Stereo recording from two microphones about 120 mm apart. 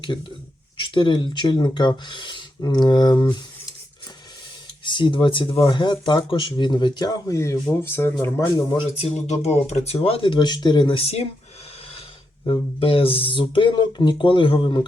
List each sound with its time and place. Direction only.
0.8 s speech: 40° left (ahead or behind)
4.9 s speech: 40° left (ahead or behind); by 8.1 s 20° left (ahead or behind)
8.2 s speech: 30° left (ahead or behind)
9.0 s speech: 60° left (ahead or behind)
12.5 s speech: 50° left (ahead or behind)